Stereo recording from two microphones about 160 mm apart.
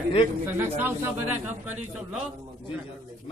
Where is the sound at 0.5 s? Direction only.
15° right (ahead or behind).